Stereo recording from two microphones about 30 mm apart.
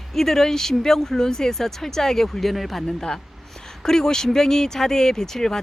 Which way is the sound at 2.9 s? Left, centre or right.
Left.